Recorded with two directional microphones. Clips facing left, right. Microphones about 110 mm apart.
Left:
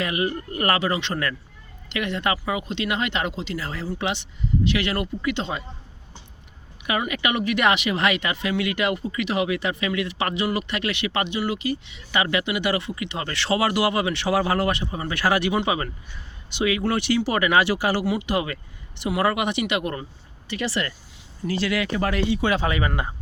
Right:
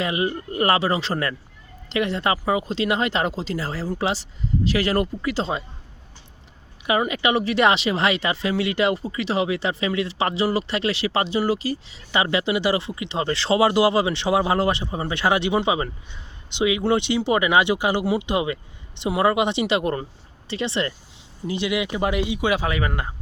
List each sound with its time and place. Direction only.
0.0 s speech: 25° right (ahead or behind)
6.8 s speech: 25° right (ahead or behind); by 23.1 s centre (ahead or behind)